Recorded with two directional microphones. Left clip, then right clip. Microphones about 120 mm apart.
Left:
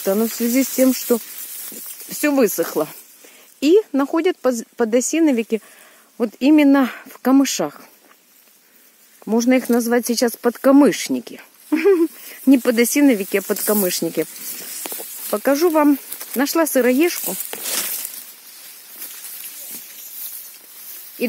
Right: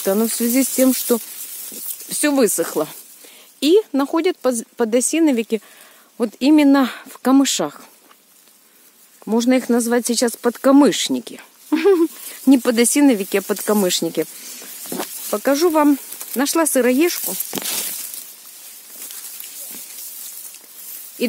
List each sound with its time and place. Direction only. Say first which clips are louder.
0.0 s speech: even; 30° right (ahead or behind)
0.3 s speech: even; 15° right (ahead or behind)
2.0 s speech: even; centre (ahead or behind)
9.2 s speech: even; centre (ahead or behind)
11.3 s a sound: even; 10° right (ahead or behind)
12.4 s speech: even; 15° right (ahead or behind)